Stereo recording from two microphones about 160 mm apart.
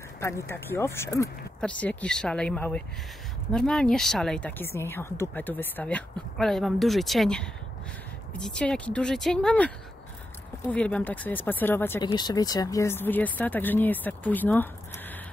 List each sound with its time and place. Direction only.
0.2 s a woman's voice: 15° left (ahead or behind)
12.0 s speech: 25° left (ahead or behind)